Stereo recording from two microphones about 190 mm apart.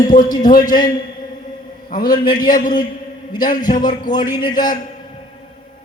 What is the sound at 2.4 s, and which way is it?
Speech, 50° left (ahead or behind).